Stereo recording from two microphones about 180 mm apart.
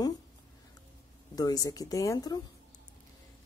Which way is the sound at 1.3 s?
20° left (ahead or behind).